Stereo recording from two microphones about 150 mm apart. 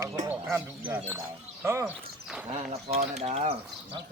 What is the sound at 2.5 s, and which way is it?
Speech, 45° right (ahead or behind).